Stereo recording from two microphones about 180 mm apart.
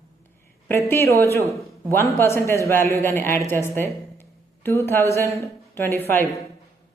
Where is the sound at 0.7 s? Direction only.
15° left (ahead or behind).